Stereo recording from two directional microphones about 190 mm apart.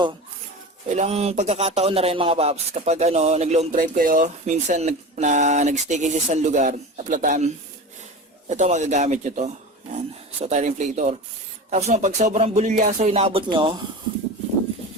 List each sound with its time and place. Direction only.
0.9 s speech: 35° right (ahead or behind)